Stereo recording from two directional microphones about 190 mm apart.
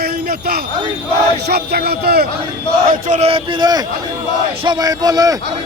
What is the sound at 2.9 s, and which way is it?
Speech, 40° right (ahead or behind).